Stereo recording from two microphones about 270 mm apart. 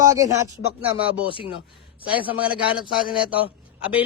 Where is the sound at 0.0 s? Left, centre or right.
Centre.